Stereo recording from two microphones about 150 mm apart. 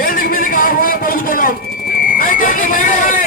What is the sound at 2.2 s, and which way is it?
Speech, 65° left (ahead or behind).